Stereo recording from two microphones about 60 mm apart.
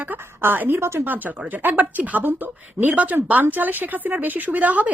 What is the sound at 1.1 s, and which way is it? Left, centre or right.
A woman's voice, right.